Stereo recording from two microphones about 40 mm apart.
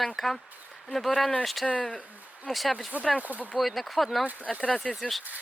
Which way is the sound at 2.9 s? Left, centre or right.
Right.